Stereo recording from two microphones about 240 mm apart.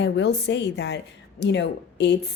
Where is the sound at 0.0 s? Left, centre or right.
Left.